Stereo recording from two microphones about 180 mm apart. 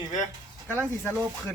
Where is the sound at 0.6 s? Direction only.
10° left (ahead or behind).